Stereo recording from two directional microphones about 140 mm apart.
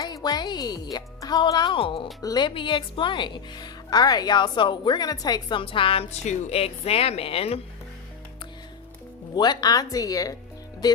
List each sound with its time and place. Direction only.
0.0 s speech: 30° left (ahead or behind); by 7.6 s 45° left (ahead or behind)
9.3 s speech: 30° left (ahead or behind)